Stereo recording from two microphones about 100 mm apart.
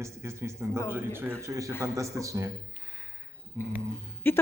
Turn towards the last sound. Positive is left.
turn(degrees=20)  # may be behind; listen again after turning